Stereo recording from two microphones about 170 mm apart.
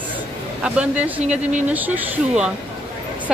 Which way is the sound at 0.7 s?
5° right (ahead or behind).